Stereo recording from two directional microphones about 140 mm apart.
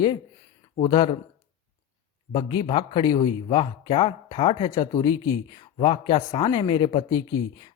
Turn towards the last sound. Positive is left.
turn(degrees=30)  # may be behind; listen again after turning